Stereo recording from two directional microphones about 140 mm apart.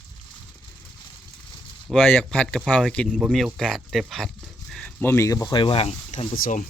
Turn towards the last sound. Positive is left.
turn(degrees=75)  # may be behind; listen again after turning